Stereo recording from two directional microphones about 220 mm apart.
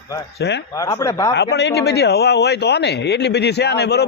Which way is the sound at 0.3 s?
50° left (ahead or behind).